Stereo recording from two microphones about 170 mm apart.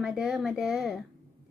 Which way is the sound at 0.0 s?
5° right (ahead or behind).